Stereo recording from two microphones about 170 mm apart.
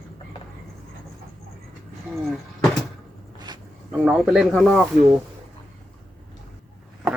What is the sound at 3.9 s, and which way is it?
Speech, centre (ahead or behind).